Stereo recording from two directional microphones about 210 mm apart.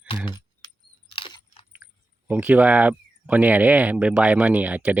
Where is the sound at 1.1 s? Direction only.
25° left (ahead or behind).